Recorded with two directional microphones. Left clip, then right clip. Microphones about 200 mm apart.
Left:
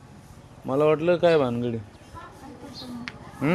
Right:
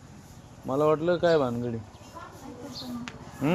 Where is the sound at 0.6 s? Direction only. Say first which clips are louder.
Left 3 dB; 20° left (ahead or behind).